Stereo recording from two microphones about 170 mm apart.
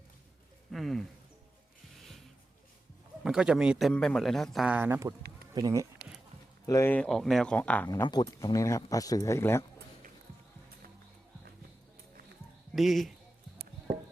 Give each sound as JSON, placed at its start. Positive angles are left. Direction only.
{"t": 0.7, "sound": "a man's voice", "side_deg": 0}
{"t": 1.9, "sound": "music", "side_deg": 0}
{"t": 3.2, "sound": "a man's voice", "side_deg": -5}
{"t": 6.7, "sound": "speech", "side_deg": 15}
{"t": 7.9, "sound": "speech", "side_deg": 25}
{"t": 12.7, "sound": "speech", "side_deg": 0}